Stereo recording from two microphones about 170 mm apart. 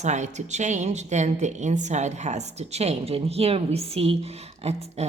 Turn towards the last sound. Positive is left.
turn(degrees=-40)  # may be behind; listen again after turning